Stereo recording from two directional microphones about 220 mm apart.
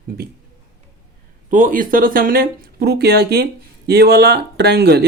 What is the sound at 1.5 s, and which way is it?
Speech, 40° right (ahead or behind).